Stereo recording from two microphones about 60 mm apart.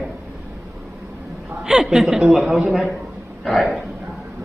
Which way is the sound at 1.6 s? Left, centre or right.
Centre.